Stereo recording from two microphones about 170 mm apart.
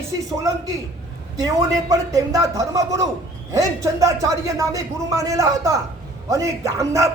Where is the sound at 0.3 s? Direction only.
20° right (ahead or behind).